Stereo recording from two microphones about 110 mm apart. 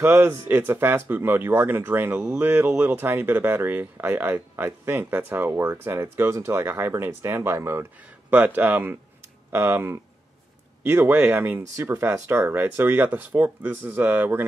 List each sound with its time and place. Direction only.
0.0 s speech: 25° right (ahead or behind)